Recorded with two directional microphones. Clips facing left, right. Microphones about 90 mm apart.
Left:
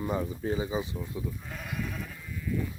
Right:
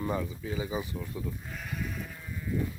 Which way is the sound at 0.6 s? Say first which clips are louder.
Left 2 dB; 25° left (ahead or behind).